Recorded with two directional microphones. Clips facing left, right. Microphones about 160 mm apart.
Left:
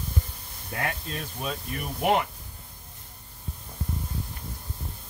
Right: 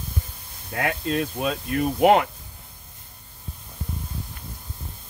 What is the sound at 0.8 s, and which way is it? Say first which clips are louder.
Speech: right 11 dB; 90° right.